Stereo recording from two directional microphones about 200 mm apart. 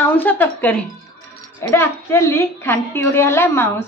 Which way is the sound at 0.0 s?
10° left (ahead or behind).